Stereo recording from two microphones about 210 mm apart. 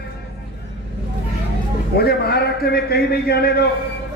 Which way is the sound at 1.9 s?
50° left (ahead or behind).